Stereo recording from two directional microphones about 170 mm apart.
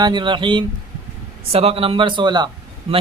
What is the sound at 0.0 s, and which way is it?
Speech, 25° right (ahead or behind).